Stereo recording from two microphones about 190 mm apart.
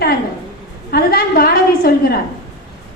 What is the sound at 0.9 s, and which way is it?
A woman's voice, 50° left (ahead or behind).